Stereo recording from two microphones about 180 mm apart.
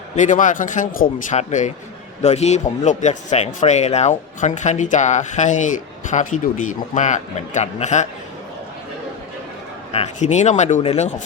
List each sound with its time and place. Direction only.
0.2 s speech: 45° left (ahead or behind)
9.9 s speech: 35° left (ahead or behind)